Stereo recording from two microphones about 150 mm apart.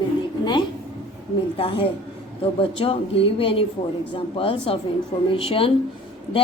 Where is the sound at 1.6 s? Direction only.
35° left (ahead or behind).